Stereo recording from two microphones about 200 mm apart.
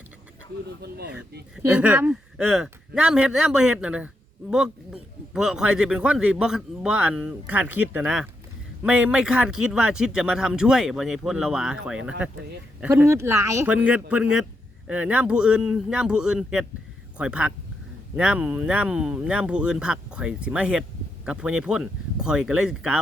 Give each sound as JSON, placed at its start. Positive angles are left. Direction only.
{"t": 0.8, "sound": "speech", "side_deg": -55}
{"t": 1.5, "sound": "speech", "side_deg": -5}
{"t": 5.3, "sound": "speech", "side_deg": -5}